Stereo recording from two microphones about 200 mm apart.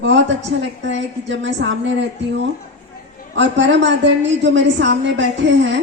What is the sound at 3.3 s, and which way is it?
A woman's voice, 65° right (ahead or behind).